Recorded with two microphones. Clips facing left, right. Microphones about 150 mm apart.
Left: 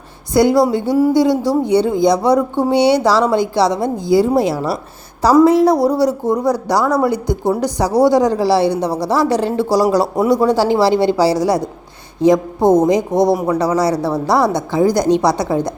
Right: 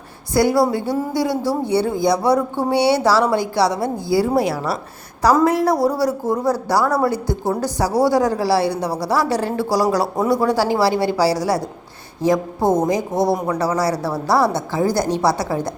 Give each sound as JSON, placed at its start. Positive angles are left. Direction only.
{"t": 0.3, "sound": "a woman's voice", "side_deg": 20}